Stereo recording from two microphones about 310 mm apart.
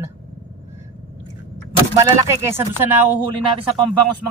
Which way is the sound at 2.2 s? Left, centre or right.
Centre.